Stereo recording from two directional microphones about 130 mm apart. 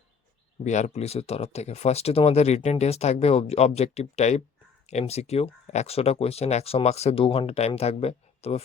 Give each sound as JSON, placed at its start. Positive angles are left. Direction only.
{"t": 0.6, "sound": "speech", "side_deg": 65}